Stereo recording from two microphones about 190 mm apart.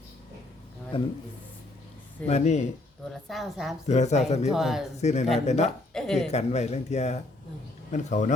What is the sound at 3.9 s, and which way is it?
Speech, 35° left (ahead or behind).